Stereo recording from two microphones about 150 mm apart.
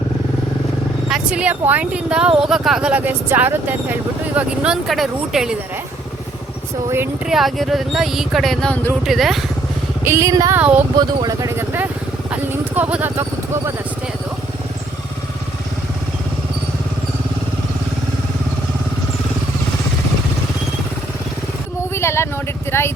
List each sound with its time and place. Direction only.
1.1 s speech: 5° right (ahead or behind)
7.3 s speech: centre (ahead or behind)
10.0 s speech: 20° right (ahead or behind)
10.6 s speech: 10° right (ahead or behind)
10.9 s speech: 30° right (ahead or behind)
12.3 s vehicle: 10° right (ahead or behind)
21.9 s speech: 15° left (ahead or behind)